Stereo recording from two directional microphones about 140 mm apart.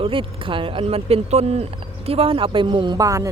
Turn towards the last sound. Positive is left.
turn(degrees=-25)  # may be behind; listen again after turning